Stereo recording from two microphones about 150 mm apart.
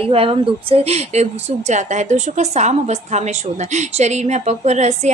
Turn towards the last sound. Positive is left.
turn(degrees=-50)  # may be behind; listen again after turning